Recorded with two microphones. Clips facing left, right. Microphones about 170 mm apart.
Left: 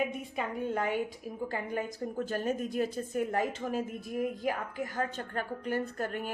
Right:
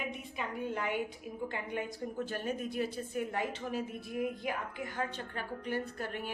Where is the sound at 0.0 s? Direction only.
45° left (ahead or behind).